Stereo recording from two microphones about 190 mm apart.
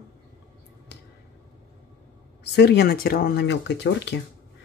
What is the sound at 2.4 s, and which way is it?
Speech, 60° left (ahead or behind).